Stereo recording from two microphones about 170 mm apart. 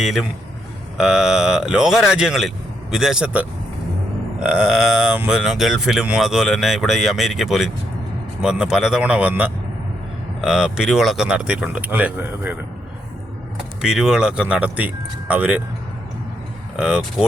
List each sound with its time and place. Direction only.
0.0 s speech: centre (ahead or behind)
13.8 s speech: 5° right (ahead or behind)
16.7 s speech: 5° right (ahead or behind)